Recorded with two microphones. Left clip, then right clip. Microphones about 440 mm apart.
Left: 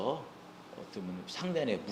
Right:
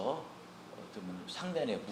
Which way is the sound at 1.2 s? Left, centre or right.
Left.